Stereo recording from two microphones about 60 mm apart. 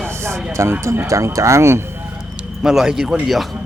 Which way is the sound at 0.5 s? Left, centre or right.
Right.